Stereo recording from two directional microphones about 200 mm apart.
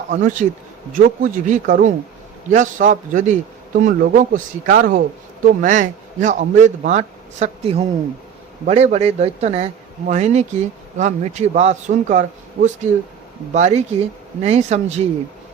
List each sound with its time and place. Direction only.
0.1 s speech: 40° right (ahead or behind)